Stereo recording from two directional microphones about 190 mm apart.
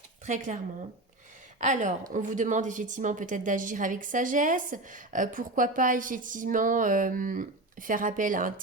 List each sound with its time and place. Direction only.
0.3 s a woman's voice: 40° right (ahead or behind)